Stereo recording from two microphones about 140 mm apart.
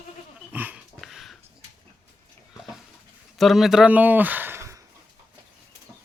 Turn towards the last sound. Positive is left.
turn(degrees=-20)  # may be behind; listen again after turning